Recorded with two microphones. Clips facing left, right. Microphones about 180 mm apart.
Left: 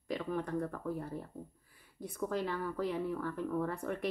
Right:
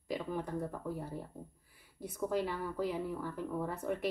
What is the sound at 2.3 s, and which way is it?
Speech, 10° right (ahead or behind).